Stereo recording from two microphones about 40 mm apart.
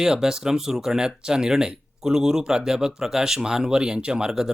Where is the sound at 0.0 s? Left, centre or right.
Centre.